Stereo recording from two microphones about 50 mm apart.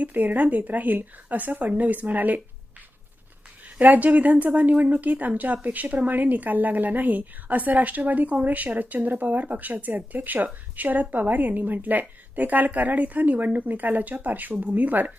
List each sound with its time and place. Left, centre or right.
0.0 s speech: right
3.8 s speech: right